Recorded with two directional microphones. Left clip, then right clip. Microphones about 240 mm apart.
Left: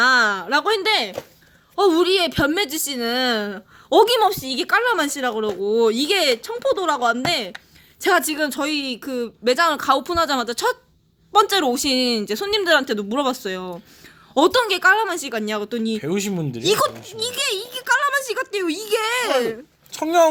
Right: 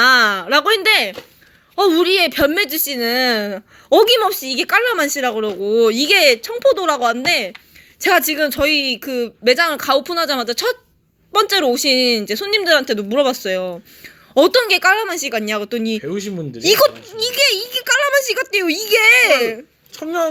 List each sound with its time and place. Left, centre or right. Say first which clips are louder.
0.0 s a sound: right 4 dB; centre
1.7 s speech: right 3 dB; centre
16.0 s speech: even; left
16.6 s a woman's voice: right 7 dB; centre
20.0 s speech: left 4 dB; left